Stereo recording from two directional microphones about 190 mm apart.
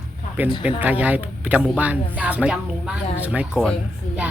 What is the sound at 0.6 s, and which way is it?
Speech, 10° right (ahead or behind).